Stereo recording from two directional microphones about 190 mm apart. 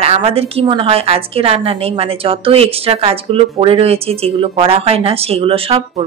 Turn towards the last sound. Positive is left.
turn(degrees=-30)  # may be behind; listen again after turning